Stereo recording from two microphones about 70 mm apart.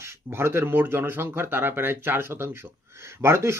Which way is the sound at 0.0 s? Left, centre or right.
Right.